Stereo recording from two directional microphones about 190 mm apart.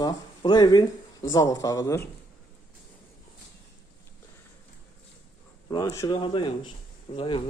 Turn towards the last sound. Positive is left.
turn(degrees=30)  # may be behind; listen again after turning